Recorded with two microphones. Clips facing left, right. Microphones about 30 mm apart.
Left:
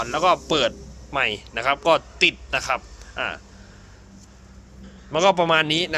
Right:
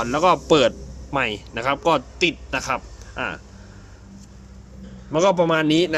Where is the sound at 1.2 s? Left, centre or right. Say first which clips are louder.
Left 3 dB; left.